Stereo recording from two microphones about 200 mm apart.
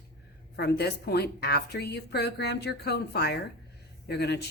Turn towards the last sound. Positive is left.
turn(degrees=55)  # may be behind; listen again after turning